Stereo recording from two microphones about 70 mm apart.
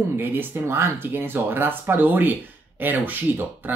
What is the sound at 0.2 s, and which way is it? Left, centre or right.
Speech, right.